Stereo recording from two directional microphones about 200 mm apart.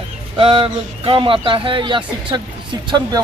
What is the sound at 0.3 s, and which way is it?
Speech, 25° right (ahead or behind).